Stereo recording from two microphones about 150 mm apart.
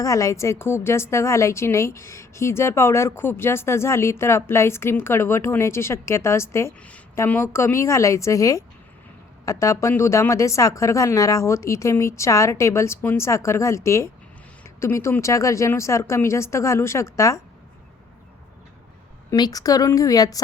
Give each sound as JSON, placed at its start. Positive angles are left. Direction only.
{"t": 0.0, "sound": "a woman's voice", "side_deg": 20}
{"t": 19.3, "sound": "speech", "side_deg": 25}